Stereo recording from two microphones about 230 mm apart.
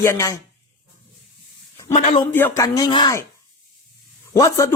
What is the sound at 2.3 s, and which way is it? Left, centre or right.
Speech, centre.